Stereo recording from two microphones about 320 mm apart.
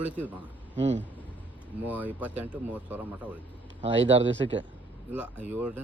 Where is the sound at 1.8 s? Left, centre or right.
Centre.